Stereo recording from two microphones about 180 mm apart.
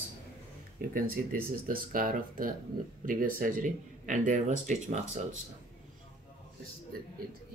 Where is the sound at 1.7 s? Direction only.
50° right (ahead or behind).